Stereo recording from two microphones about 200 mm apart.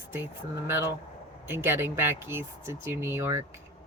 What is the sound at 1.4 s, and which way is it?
Speech, 10° right (ahead or behind).